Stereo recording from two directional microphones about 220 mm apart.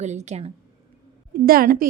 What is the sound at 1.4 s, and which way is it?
Speech, 40° right (ahead or behind).